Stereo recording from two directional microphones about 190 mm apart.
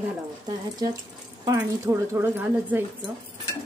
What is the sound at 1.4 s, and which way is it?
Speech, 15° right (ahead or behind).